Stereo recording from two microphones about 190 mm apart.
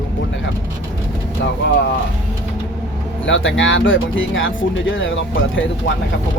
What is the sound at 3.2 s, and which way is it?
Speech, 85° left.